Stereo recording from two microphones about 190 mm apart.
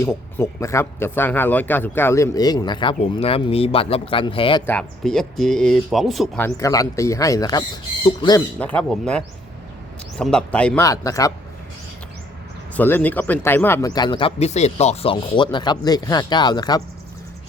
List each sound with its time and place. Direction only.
0.0 s speech: 15° left (ahead or behind)
4.6 s speech: 5° left (ahead or behind)
6.6 s speech: 15° left (ahead or behind)
8.4 s speech: 5° left (ahead or behind)
12.7 s speech: 10° left (ahead or behind)